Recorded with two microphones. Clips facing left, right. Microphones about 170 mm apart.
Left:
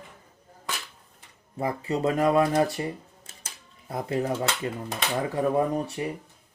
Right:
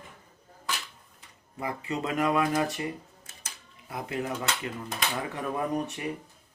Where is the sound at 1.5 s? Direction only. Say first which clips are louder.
Left 5 dB; 35° left (ahead or behind).